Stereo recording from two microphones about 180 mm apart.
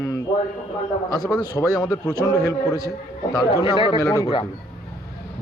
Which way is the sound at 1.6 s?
20° left (ahead or behind).